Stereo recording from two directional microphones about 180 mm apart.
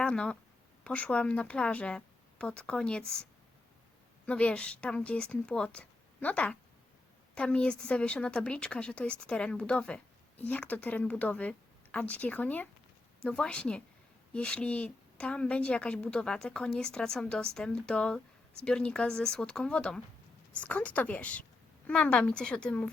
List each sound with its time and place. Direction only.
0.0 s a woman's voice: 5° left (ahead or behind)
4.3 s a woman's voice: 5° left (ahead or behind)